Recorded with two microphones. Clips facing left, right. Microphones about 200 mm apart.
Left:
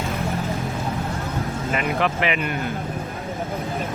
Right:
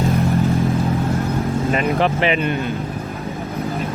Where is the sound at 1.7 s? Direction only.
30° right (ahead or behind).